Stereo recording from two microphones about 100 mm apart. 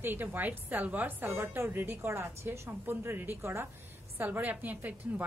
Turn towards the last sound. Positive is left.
turn(degrees=-15)  # may be behind; listen again after turning